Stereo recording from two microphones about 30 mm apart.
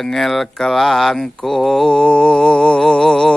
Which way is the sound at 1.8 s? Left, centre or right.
Left.